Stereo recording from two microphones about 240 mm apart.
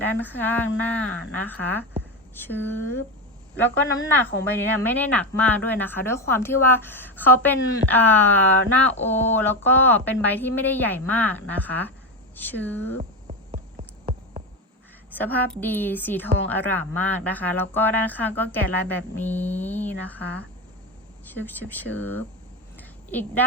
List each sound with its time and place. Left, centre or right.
0.0 s a woman's voice: centre
4.1 s a woman's voice: centre
14.0 s insect: right
15.1 s a woman's voice: centre
22.8 s a sound: centre